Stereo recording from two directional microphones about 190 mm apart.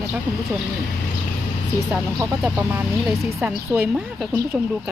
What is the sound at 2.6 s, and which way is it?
A woman's voice, 10° right (ahead or behind).